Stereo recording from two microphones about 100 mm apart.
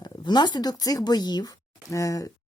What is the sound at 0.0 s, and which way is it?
Speech, 45° left (ahead or behind).